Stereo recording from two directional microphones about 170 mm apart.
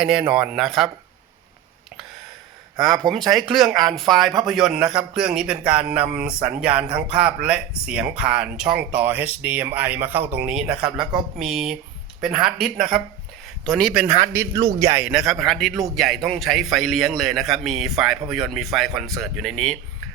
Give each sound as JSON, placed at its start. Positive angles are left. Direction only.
{"t": 0.0, "sound": "a man's voice", "side_deg": -5}
{"t": 2.7, "sound": "a man's voice", "side_deg": 0}
{"t": 14.0, "sound": "speech", "side_deg": -15}
{"t": 14.9, "sound": "a man's voice", "side_deg": -5}